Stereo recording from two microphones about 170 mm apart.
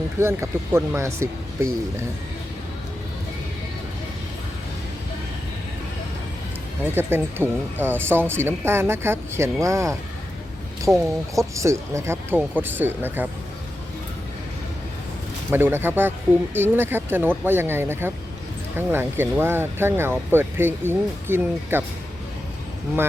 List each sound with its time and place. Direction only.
0.2 s speech: 15° right (ahead or behind)
6.9 s speech: 15° right (ahead or behind)
10.9 s speech: 5° right (ahead or behind)
11.3 s speech: 20° right (ahead or behind)
15.4 s speech: 10° right (ahead or behind)